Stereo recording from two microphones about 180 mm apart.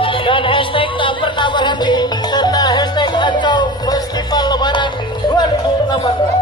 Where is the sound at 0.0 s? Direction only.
30° left (ahead or behind).